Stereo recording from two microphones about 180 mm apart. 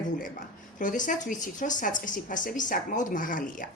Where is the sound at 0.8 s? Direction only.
45° left (ahead or behind).